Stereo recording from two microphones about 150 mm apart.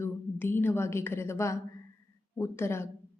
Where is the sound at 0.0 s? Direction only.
15° left (ahead or behind).